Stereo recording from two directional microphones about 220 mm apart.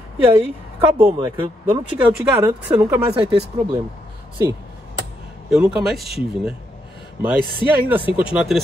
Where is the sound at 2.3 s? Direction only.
10° right (ahead or behind).